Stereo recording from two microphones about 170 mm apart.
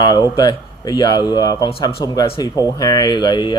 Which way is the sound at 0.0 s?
25° left (ahead or behind).